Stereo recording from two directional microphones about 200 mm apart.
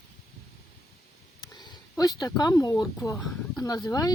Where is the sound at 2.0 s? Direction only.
20° left (ahead or behind).